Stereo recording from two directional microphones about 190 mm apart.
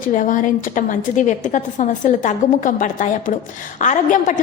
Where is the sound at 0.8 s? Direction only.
40° left (ahead or behind).